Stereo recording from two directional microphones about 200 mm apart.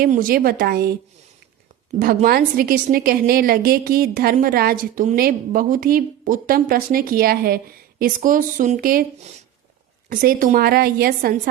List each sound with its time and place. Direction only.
0.0 s a woman's voice: 45° right (ahead or behind)
2.2 s a woman's voice: 45° right (ahead or behind)